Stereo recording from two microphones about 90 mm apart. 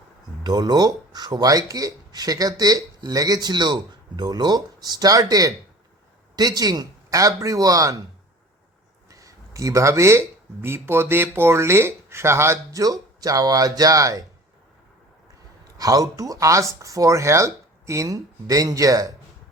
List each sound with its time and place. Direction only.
0.4 s speech: 50° right (ahead or behind)
9.0 s speech: 40° right (ahead or behind)
12.8 s speech: 45° right (ahead or behind)
15.8 s speech: 40° right (ahead or behind)